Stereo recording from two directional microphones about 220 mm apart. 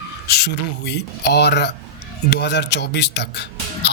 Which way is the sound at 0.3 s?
45° left (ahead or behind).